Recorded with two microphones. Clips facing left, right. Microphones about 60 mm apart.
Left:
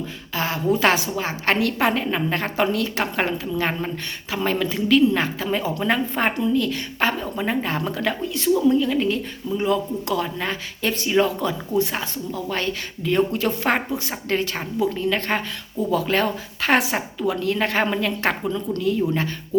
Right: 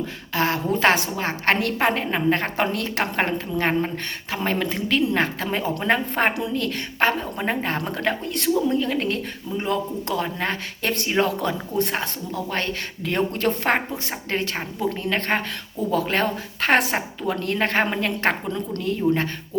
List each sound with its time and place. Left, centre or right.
0.3 s a woman's voice: right
9.6 s speech: right
11.8 s a woman's voice: right
14.8 s a woman's voice: right